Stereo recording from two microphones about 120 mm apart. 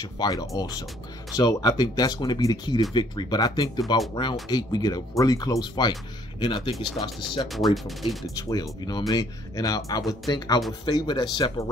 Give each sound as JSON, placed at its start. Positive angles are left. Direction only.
{"t": 0.0, "sound": "speech", "side_deg": 30}
{"t": 7.5, "sound": "speech", "side_deg": 0}
{"t": 8.4, "sound": "speech", "side_deg": 30}